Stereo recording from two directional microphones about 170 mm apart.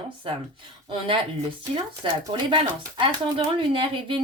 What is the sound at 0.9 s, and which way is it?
Speech, 30° right (ahead or behind).